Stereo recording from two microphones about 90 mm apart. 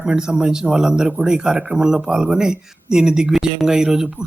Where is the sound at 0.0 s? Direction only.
10° right (ahead or behind).